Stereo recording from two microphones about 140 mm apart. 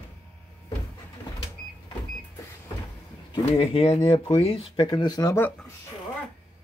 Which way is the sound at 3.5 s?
40° left (ahead or behind).